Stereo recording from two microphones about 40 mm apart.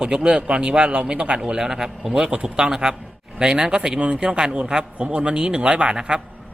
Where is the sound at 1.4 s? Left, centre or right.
Centre.